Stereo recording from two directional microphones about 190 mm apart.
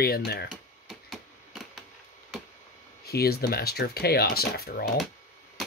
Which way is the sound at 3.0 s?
55° left (ahead or behind).